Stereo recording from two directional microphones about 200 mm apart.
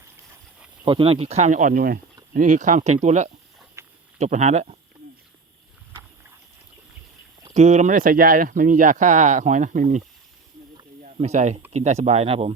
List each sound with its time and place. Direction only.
0.9 s speech: 25° right (ahead or behind)
3.8 s a sound: 15° right (ahead or behind)
4.2 s speech: 35° right (ahead or behind)
5.9 s a sound: 10° right (ahead or behind)
7.5 s speech: 35° right (ahead or behind)
11.0 s speech: 35° right (ahead or behind)